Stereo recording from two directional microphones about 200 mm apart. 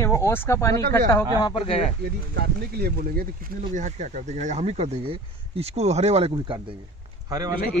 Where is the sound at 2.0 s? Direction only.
55° right (ahead or behind).